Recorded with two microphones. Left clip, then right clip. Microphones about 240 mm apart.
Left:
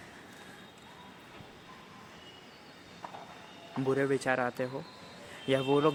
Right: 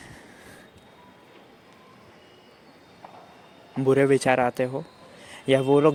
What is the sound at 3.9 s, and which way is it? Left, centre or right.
Speech, right.